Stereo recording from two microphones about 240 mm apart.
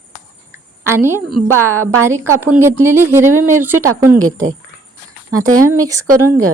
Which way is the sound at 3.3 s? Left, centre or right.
Right.